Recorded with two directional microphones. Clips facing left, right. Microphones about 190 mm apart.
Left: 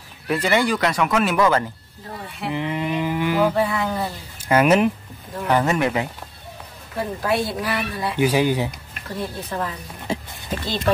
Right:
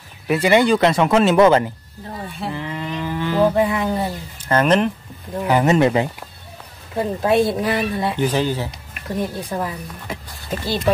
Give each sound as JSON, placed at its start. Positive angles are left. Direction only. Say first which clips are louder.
{"t": 0.3, "sound": "speech", "louder": "right 5 dB", "side_deg": -15}
{"t": 2.5, "sound": "a sound", "louder": "left 7 dB", "side_deg": 15}
{"t": 3.5, "sound": "speech", "louder": "right 3 dB", "side_deg": -20}
{"t": 4.5, "sound": "speech", "louder": "even", "side_deg": 10}
{"t": 5.6, "sound": "speech", "louder": "right 9 dB", "side_deg": -25}
{"t": 8.2, "sound": "speech", "louder": "left 4 dB", "side_deg": 10}
{"t": 9.1, "sound": "speech", "louder": "right 4 dB", "side_deg": -15}
{"t": 10.1, "sound": "a sound", "louder": "left 6 dB", "side_deg": 30}